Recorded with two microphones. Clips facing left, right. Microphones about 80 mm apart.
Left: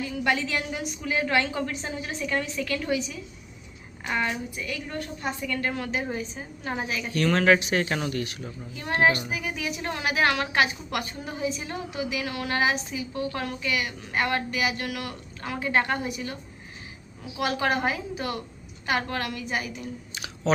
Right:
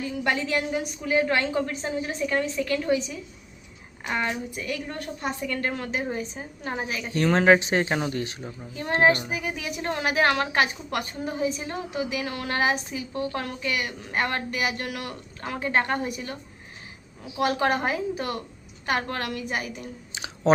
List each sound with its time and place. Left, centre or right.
0.0 s a woman's voice: right
4.5 s a woman's voice: right